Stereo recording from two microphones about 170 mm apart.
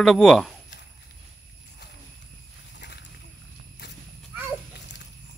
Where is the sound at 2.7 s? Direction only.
85° left.